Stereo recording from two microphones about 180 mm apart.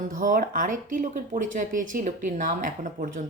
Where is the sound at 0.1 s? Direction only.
50° right (ahead or behind).